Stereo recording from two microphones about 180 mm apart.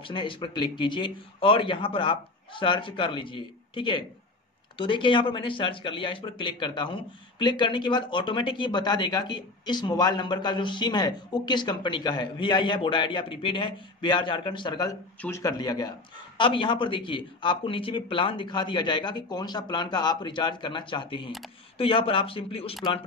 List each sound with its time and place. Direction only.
0.0 s a man's voice: 30° left (ahead or behind)